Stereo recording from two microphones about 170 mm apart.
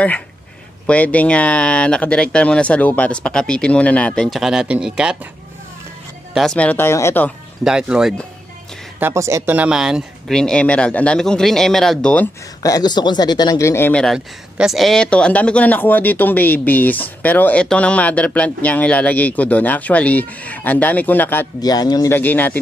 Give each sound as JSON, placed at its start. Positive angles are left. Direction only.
{"t": 0.8, "sound": "speech", "side_deg": 10}
{"t": 6.3, "sound": "speech", "side_deg": 5}
{"t": 7.6, "sound": "speech", "side_deg": -5}
{"t": 9.0, "sound": "speech", "side_deg": -15}
{"t": 12.6, "sound": "speech", "side_deg": 25}
{"t": 21.5, "sound": "speech", "side_deg": 25}